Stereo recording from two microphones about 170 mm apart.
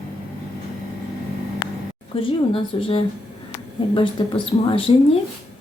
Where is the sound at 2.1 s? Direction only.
30° left (ahead or behind).